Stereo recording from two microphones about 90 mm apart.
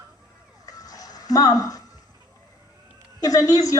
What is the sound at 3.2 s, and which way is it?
Speech, 40° left (ahead or behind).